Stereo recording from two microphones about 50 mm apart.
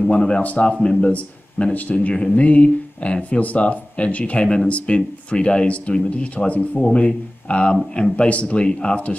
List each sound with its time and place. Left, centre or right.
0.1 s speech: left